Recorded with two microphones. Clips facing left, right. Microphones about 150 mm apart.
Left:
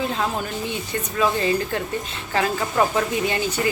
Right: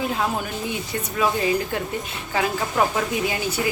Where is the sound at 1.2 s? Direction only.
10° right (ahead or behind).